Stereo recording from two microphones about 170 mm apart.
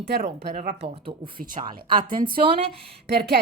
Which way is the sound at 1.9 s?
25° right (ahead or behind).